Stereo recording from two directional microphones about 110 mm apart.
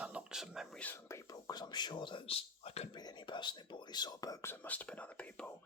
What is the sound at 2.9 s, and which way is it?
Speech, 40° left (ahead or behind).